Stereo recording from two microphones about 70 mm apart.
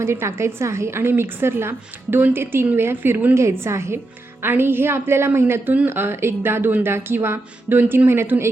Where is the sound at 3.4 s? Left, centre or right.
Right.